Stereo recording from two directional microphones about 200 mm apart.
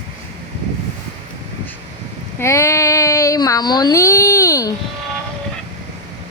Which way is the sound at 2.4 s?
15° left (ahead or behind).